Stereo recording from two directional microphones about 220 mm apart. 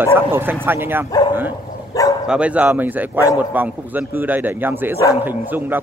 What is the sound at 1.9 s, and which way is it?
Bow-wow, 15° left (ahead or behind).